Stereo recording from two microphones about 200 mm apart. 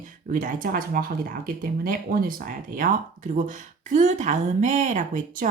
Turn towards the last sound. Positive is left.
turn(degrees=-40)  # may be behind; listen again after turning